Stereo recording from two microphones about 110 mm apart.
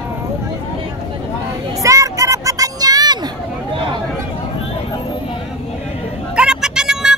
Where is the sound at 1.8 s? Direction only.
30° right (ahead or behind); by 3.9 s 45° right (ahead or behind).